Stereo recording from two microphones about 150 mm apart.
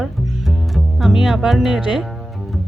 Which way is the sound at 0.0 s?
Centre (ahead or behind).